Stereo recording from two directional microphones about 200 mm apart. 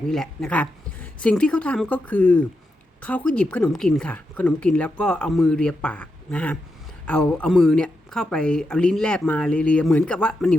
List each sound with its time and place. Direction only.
0.1 s speech: 5° left (ahead or behind)